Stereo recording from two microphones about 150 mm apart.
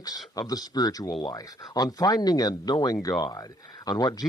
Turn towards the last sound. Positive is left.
turn(degrees=25)  # may be behind; listen again after turning